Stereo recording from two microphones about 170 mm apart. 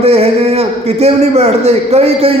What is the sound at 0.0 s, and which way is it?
A man's voice, 35° right (ahead or behind).